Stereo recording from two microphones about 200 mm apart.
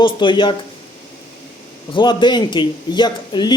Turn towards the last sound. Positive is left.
turn(degrees=20)  # may be behind; listen again after turning